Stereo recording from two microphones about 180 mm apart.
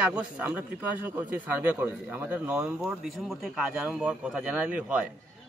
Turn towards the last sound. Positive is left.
turn(degrees=-5)  # may be behind; listen again after turning